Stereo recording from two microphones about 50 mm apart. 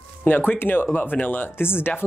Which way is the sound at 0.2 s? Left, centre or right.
Left.